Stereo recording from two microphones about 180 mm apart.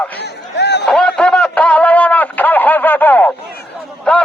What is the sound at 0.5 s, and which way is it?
Chatter, 70° left (ahead or behind).